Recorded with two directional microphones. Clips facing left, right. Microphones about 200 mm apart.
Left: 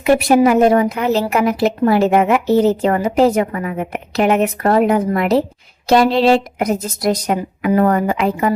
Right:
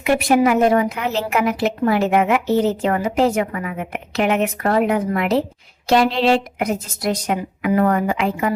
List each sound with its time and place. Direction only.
0.0 s a woman's voice: 35° left (ahead or behind)